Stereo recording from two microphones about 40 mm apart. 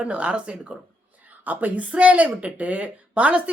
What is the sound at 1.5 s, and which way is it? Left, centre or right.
Speech, right.